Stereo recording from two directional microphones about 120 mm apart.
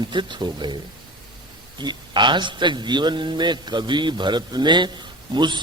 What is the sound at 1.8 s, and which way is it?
A man's voice, 40° right (ahead or behind).